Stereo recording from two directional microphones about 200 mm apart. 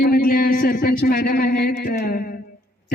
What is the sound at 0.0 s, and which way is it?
Speech, 45° left (ahead or behind).